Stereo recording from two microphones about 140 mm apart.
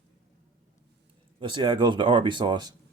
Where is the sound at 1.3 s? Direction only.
35° right (ahead or behind).